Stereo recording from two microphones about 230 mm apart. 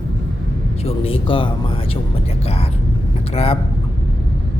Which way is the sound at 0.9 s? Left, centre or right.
Left.